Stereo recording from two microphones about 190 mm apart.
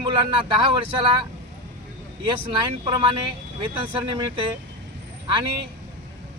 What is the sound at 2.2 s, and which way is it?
Speech, 25° right (ahead or behind).